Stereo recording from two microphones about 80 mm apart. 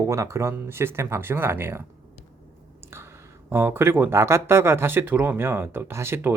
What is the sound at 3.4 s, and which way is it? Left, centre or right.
Speech, right.